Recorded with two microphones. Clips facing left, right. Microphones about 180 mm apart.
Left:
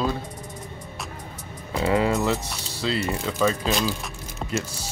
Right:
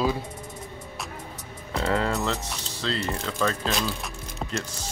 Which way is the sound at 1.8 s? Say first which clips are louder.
Left 4 dB; 15° left (ahead or behind).